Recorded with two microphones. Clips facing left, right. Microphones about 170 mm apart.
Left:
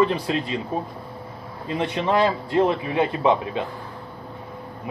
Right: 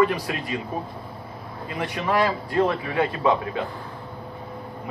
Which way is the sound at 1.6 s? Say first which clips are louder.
Left 3 dB; 25° left (ahead or behind).